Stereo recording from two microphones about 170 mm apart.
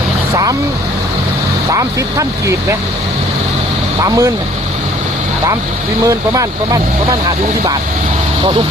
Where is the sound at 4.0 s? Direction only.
15° right (ahead or behind).